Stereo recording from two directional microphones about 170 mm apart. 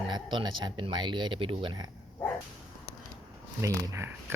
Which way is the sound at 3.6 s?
15° right (ahead or behind).